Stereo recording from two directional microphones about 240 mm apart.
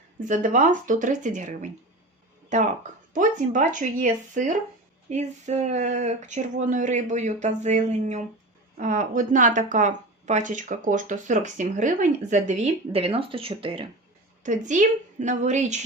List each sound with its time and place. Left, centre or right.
0.3 s speech: right